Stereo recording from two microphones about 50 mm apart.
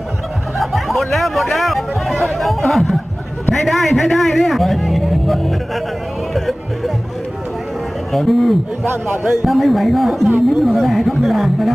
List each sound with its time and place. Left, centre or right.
0.6 s a sound: centre
2.3 s chatter: centre
3.5 s music: centre
8.1 s speech: centre
8.8 s a man's voice: right
9.5 s speech: centre